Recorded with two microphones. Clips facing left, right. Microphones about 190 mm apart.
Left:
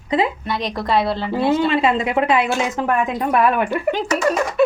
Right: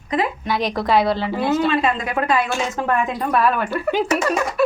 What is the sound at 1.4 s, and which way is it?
A woman's voice, 25° left (ahead or behind).